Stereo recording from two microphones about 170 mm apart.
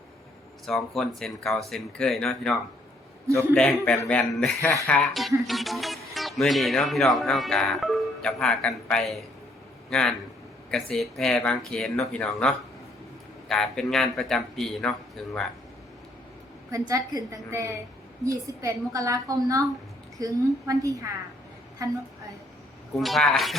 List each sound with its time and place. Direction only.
0.6 s speech: centre (ahead or behind)
16.7 s a woman's voice: 20° right (ahead or behind)
23.0 s speech: centre (ahead or behind)